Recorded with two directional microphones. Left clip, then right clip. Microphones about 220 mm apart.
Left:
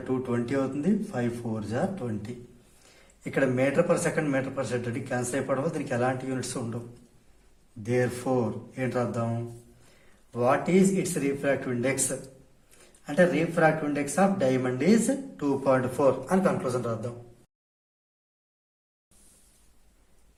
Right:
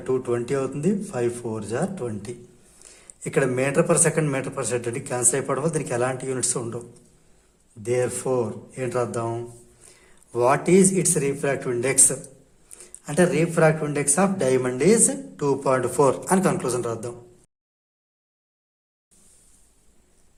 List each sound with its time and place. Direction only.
0.1 s speech: 50° right (ahead or behind)
3.3 s speech: 50° right (ahead or behind)
7.8 s speech: 45° right (ahead or behind)
10.3 s speech: 55° right (ahead or behind)
13.1 s speech: 55° right (ahead or behind)